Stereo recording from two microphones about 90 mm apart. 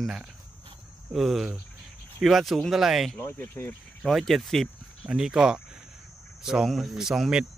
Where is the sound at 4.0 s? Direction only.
Centre (ahead or behind).